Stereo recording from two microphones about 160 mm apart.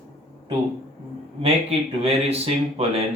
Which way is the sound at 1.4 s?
40° right (ahead or behind).